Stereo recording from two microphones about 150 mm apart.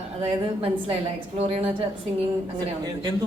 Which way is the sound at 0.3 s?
40° right (ahead or behind).